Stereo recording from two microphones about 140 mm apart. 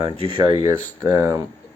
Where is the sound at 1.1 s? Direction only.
25° right (ahead or behind).